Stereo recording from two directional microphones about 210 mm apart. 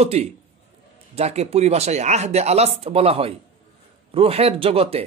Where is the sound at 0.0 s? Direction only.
30° right (ahead or behind).